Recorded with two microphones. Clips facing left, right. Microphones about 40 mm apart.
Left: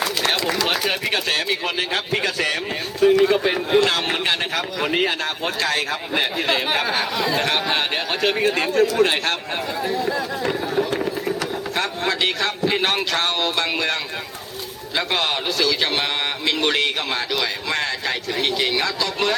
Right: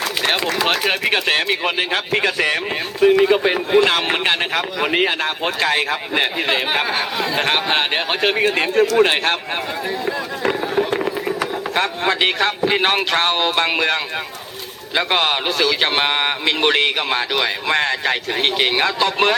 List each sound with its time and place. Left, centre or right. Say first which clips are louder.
0.2 s a man's voice: right 4 dB; right
7.3 s a man's voice: right 5 dB; right
10.1 s a sound: right 2 dB; right
13.1 s a man's voice: right 4 dB; right